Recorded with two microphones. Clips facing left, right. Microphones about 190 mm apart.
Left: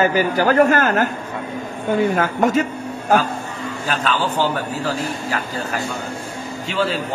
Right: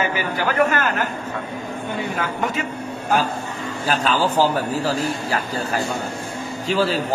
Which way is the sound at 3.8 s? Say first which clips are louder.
Right 2 dB; 40° right (ahead or behind).